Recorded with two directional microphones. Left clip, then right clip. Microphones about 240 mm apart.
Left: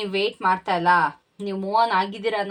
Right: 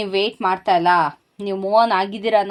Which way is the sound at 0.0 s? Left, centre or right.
Right.